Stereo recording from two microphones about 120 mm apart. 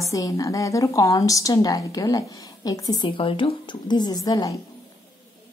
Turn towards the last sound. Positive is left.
turn(degrees=30)  # may be behind; listen again after turning